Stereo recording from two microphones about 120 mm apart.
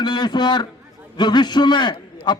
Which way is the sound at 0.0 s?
40° left (ahead or behind).